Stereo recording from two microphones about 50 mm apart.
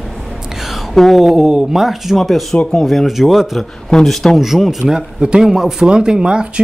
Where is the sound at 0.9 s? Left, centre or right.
Centre.